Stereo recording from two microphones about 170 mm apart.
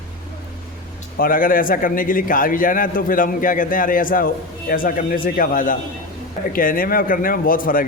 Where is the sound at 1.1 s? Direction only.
55° left (ahead or behind).